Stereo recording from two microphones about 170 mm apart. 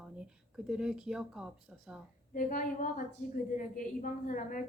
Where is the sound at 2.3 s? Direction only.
55° left (ahead or behind).